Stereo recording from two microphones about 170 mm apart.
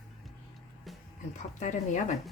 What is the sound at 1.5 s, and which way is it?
Speech, 45° left (ahead or behind).